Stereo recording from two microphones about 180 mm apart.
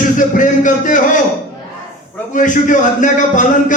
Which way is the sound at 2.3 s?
45° left (ahead or behind).